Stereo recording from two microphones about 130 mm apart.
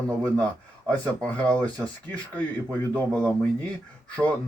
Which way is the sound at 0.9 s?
10° left (ahead or behind).